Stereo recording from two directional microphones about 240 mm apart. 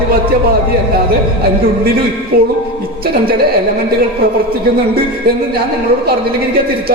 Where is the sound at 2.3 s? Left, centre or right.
Right.